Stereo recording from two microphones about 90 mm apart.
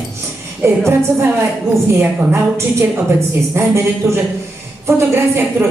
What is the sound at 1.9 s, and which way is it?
A woman's voice, 30° right (ahead or behind).